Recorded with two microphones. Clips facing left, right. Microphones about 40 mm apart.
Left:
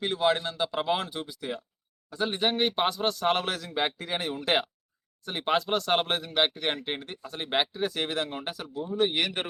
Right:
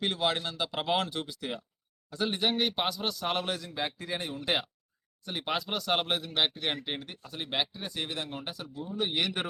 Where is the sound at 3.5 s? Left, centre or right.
Left.